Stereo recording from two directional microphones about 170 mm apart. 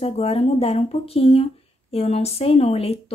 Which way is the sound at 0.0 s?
35° left (ahead or behind).